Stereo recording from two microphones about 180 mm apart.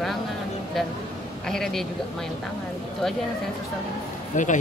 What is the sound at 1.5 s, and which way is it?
Speech, 5° left (ahead or behind).